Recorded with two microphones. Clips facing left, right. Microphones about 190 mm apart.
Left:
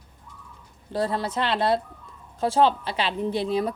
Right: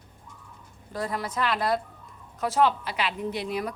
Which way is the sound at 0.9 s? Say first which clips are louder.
Left 5 dB; 30° left (ahead or behind).